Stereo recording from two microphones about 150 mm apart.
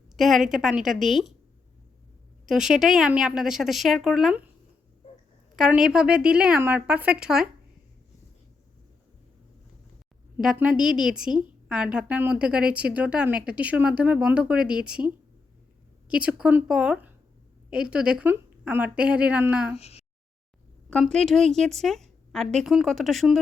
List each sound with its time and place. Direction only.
0.2 s a woman's voice: centre (ahead or behind)
2.5 s a woman's voice: 5° right (ahead or behind)
5.5 s a woman's voice: 5° right (ahead or behind)
10.4 s a woman's voice: 5° right (ahead or behind)
19.7 s speech: 45° left (ahead or behind)
20.9 s a woman's voice: 5° left (ahead or behind)